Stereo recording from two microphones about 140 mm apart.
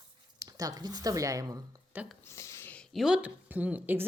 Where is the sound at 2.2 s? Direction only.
20° left (ahead or behind).